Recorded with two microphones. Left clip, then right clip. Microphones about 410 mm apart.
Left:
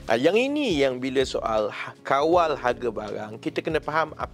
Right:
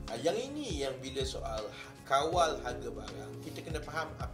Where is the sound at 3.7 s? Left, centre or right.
Right.